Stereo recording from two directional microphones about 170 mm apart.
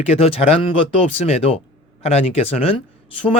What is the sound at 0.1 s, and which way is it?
Speech, 35° left (ahead or behind).